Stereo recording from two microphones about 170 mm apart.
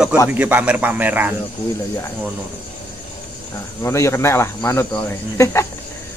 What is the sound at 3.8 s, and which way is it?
Speech, 15° left (ahead or behind).